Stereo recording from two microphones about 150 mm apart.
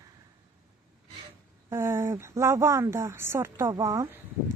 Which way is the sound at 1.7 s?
15° right (ahead or behind).